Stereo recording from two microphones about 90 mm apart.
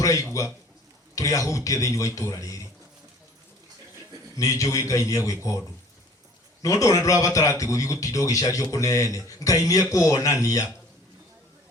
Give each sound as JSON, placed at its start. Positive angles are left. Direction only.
{"t": 0.0, "sound": "a man's voice", "side_deg": 35}
{"t": 4.4, "sound": "a man's voice", "side_deg": 35}